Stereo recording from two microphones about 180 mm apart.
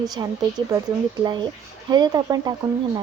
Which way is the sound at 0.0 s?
20° right (ahead or behind).